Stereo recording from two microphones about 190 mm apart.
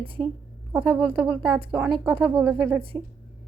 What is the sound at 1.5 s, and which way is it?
A woman's voice, 25° right (ahead or behind).